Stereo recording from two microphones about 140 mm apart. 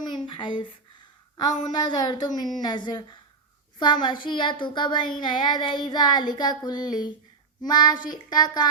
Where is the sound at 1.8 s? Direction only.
30° left (ahead or behind).